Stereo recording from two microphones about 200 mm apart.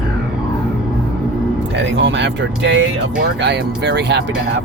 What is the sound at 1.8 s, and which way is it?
Speech, 65° right (ahead or behind).